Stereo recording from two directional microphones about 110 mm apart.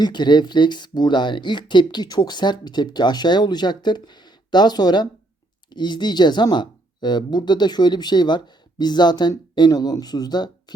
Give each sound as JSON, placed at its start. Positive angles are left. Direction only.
{"t": 0.0, "sound": "speech", "side_deg": 40}